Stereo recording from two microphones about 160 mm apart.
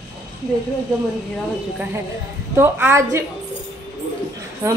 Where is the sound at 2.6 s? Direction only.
15° right (ahead or behind).